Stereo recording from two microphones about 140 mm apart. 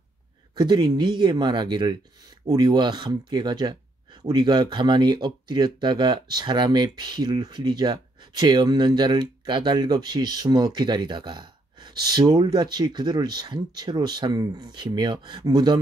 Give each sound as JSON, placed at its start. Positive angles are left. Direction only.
{"t": 0.6, "sound": "speech", "side_deg": -30}